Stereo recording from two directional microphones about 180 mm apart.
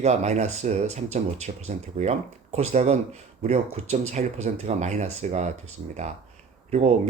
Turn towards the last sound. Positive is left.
turn(degrees=-35)  # may be behind; listen again after turning